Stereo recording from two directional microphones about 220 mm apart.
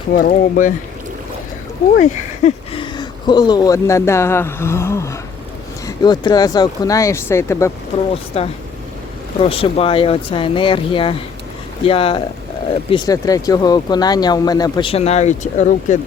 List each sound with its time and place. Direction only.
0.2 s speech: 40° left (ahead or behind)
2.0 s speech: 30° left (ahead or behind); by 7.7 s 10° left (ahead or behind)
8.4 s speech: 25° left (ahead or behind)